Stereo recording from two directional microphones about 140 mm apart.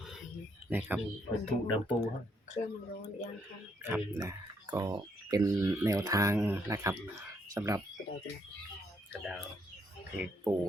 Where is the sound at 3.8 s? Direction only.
15° right (ahead or behind).